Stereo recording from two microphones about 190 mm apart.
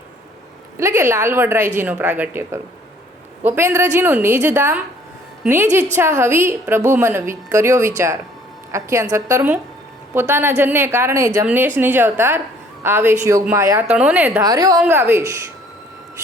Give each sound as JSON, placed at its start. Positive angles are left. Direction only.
{"t": 0.8, "sound": "a woman's voice", "side_deg": -15}